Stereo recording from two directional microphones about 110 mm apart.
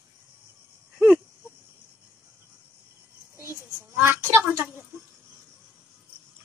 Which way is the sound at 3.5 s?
20° right (ahead or behind).